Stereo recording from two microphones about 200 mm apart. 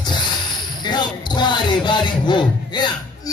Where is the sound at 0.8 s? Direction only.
20° left (ahead or behind).